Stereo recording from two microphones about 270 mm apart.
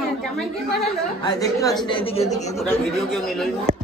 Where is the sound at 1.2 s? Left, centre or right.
Centre.